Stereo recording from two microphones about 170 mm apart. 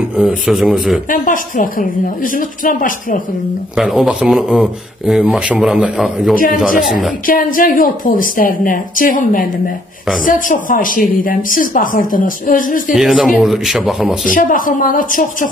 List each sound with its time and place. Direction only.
0.2 s speech: 5° right (ahead or behind)
1.1 s a woman's voice: 50° left (ahead or behind)
3.7 s speech: centre (ahead or behind)
6.3 s speech: 55° left (ahead or behind)
6.8 s speech: centre (ahead or behind)
7.2 s a woman's voice: 55° left (ahead or behind)
12.9 s speech: centre (ahead or behind)
14.3 s a woman's voice: 55° left (ahead or behind)